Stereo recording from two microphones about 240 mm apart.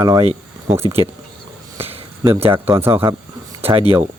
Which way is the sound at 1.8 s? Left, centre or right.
Right.